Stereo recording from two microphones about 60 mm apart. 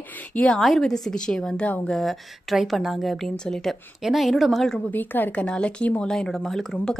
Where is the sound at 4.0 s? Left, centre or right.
Centre.